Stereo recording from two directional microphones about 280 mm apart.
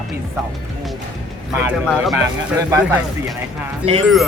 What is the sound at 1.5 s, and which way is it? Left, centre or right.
Speech, centre.